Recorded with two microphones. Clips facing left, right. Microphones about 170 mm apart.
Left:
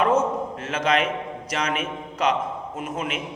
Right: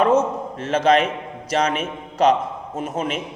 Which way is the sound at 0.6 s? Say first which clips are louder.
Right 7 dB; 35° right (ahead or behind).